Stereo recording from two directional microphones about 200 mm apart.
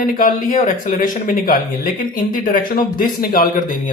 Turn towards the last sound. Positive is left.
turn(degrees=45)  # may be behind; listen again after turning